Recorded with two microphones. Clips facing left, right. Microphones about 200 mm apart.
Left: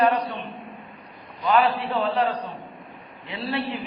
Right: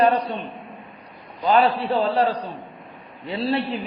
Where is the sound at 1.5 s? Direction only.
35° right (ahead or behind).